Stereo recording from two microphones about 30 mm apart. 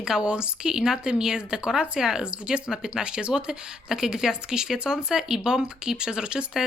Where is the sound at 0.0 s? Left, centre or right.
Right.